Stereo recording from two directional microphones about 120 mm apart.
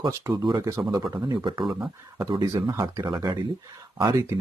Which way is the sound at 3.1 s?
40° right (ahead or behind).